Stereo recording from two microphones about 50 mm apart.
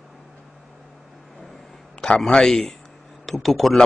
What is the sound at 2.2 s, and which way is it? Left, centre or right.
Speech, centre.